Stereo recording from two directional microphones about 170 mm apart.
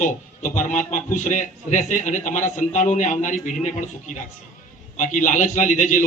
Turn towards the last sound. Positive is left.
turn(degrees=50)  # may be behind; listen again after turning